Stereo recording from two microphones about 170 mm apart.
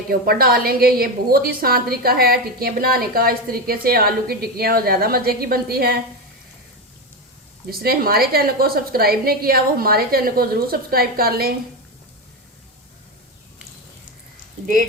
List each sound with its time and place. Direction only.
0.1 s a woman's voice: 60° right (ahead or behind)
7.7 s a woman's voice: 65° right (ahead or behind)